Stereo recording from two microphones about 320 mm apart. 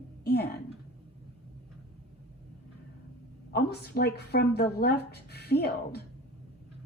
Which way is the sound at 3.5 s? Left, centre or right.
Left.